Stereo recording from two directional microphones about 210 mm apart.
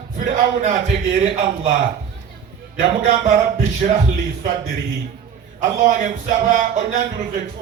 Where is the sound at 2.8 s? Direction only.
35° right (ahead or behind).